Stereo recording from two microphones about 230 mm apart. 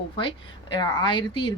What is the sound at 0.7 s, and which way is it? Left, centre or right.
Speech, centre.